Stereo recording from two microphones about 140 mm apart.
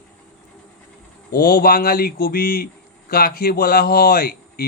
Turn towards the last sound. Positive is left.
turn(degrees=90)